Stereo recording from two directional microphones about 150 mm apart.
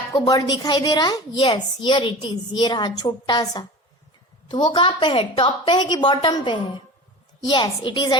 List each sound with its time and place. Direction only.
0.1 s a woman's voice: 25° left (ahead or behind)